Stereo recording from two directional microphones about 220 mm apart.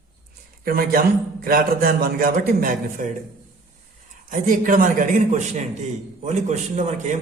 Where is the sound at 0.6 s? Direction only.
40° right (ahead or behind).